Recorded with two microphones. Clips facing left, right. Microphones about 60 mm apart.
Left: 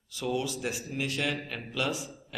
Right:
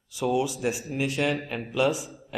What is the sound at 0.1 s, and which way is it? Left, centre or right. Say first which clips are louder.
A man's voice: right 6 dB; centre.